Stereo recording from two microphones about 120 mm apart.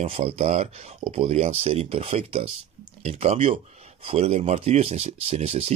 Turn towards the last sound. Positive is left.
turn(degrees=-60)  # may be behind; listen again after turning